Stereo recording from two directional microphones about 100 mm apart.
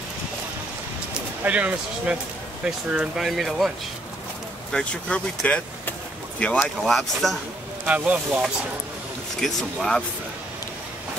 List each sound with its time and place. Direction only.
1.4 s speech: 15° right (ahead or behind)
4.7 s speech: 10° left (ahead or behind)
6.6 s speech: centre (ahead or behind)
7.8 s speech: 15° right (ahead or behind)
9.4 s speech: 5° left (ahead or behind)